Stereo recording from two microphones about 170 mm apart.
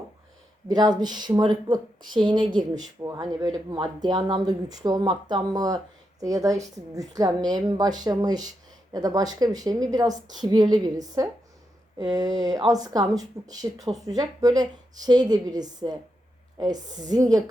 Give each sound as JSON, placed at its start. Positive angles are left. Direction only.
{"t": 0.7, "sound": "speech", "side_deg": -25}